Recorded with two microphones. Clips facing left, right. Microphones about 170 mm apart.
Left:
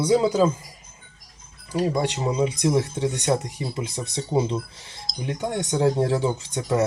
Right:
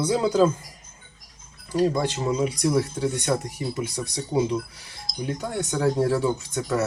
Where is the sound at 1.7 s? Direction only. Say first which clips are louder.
Right 1 dB; 15° left (ahead or behind).